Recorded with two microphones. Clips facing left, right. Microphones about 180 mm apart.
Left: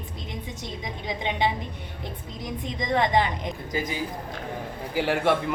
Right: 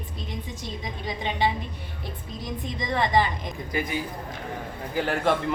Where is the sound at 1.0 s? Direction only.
15° left (ahead or behind).